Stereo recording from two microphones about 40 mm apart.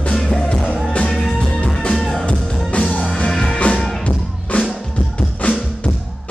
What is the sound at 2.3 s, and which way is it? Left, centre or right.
Music, left.